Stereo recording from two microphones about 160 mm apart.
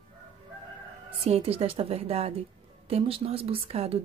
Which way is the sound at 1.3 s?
40° right (ahead or behind).